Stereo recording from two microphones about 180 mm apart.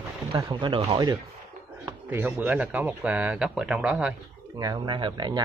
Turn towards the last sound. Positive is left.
turn(degrees=-25)  # may be behind; listen again after turning